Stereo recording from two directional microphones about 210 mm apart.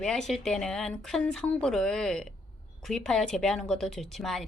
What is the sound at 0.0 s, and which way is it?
A woman's voice, centre (ahead or behind).